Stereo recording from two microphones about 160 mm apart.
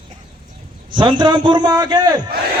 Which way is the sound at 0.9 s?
30° right (ahead or behind).